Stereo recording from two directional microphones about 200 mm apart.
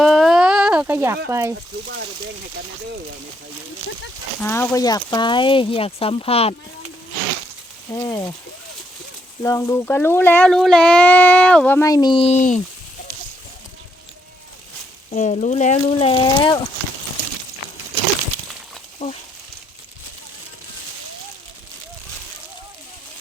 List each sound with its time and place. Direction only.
0.0 s a sound: centre (ahead or behind)
1.3 s speech: 15° right (ahead or behind)
4.4 s speech: 10° left (ahead or behind); by 6.6 s 30° left (ahead or behind)
7.9 s speech: 15° left (ahead or behind)
9.4 s speech: 15° left (ahead or behind); by 12.5 s 35° left (ahead or behind)
15.1 s speech: 40° left (ahead or behind)
19.0 s speech: 30° left (ahead or behind)